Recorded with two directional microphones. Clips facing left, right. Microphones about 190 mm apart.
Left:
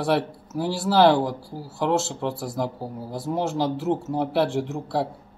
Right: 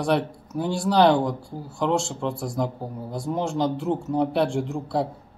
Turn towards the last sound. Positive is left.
turn(degrees=0)  # may be behind; listen again after turning